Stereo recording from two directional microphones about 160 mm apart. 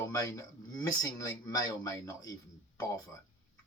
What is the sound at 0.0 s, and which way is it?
A man's voice, 20° left (ahead or behind).